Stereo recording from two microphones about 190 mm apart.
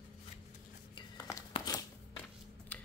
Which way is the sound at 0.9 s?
20° left (ahead or behind).